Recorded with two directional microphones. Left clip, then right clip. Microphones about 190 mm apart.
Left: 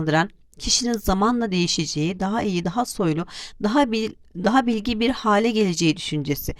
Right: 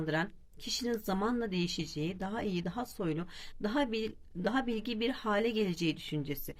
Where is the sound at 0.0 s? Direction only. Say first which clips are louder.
Left 13 dB; 50° left (ahead or behind).